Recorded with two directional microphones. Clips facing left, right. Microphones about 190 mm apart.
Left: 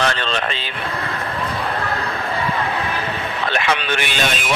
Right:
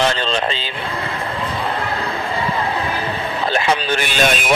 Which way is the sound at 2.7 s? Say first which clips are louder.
Right 2 dB; 30° right (ahead or behind).